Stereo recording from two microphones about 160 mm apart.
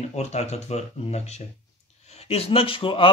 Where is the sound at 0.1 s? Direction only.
45° left (ahead or behind).